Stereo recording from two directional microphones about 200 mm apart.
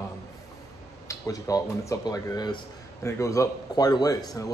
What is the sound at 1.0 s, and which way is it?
A man's voice, 15° left (ahead or behind).